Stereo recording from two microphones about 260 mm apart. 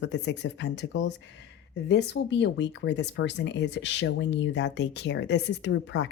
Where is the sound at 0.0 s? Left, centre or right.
Left.